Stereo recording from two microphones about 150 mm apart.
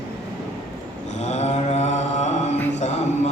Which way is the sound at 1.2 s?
50° left (ahead or behind).